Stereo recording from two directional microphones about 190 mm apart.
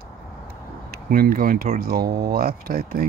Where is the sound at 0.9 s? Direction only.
50° right (ahead or behind).